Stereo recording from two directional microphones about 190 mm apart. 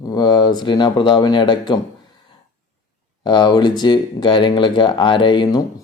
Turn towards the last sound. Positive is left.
turn(degrees=25)  # may be behind; listen again after turning